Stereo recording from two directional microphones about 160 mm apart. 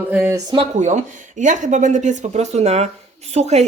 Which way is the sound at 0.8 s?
50° right (ahead or behind).